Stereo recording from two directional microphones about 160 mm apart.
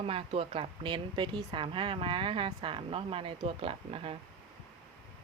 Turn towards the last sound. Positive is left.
turn(degrees=-35)  # may be behind; listen again after turning